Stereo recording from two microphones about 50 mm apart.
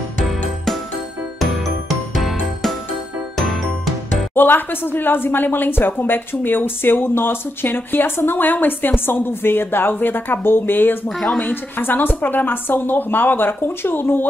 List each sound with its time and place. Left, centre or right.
1.4 s music: centre
4.4 s speech: left
11.1 s speech: centre
11.3 s a woman's voice: left